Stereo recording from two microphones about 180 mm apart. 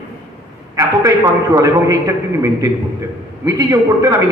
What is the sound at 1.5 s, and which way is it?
A man's voice, 20° right (ahead or behind).